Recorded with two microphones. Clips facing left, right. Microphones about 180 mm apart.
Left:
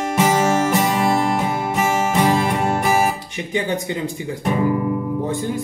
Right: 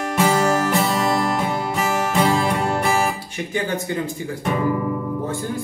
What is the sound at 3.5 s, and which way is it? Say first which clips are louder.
Speech: left 1 dB; 15° left (ahead or behind).